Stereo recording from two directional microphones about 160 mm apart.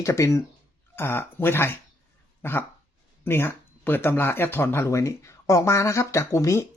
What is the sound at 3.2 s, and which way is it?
Speech, 15° left (ahead or behind).